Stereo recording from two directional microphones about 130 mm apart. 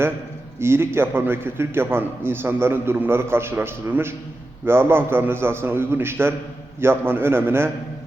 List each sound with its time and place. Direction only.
0.6 s a man's voice: 20° right (ahead or behind)